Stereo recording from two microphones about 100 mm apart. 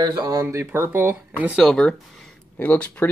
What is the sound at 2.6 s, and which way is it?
Speech, 20° left (ahead or behind).